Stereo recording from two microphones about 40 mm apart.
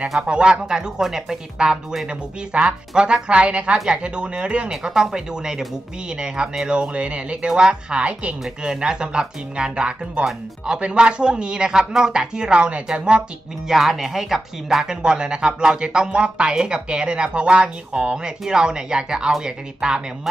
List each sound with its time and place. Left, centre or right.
0.3 s speech: right
2.5 s speech: right
4.6 s speech: centre
7.4 s speech: centre
8.1 s a woman's voice: right
8.6 s speech: right
13.7 s speech: centre